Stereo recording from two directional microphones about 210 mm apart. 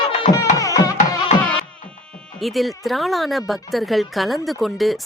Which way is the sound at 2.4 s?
Centre (ahead or behind).